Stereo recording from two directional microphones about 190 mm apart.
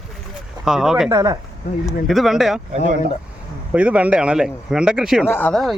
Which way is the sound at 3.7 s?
5° right (ahead or behind).